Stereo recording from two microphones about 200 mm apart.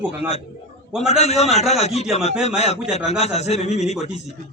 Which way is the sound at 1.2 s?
35° left (ahead or behind).